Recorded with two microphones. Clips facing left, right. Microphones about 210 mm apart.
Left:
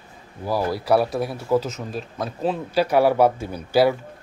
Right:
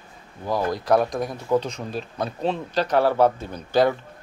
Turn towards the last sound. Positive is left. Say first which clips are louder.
# left 2 dB
turn(degrees=10)  # may be behind; listen again after turning